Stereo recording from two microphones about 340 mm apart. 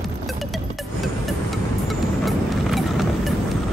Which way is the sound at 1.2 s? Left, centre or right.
Centre.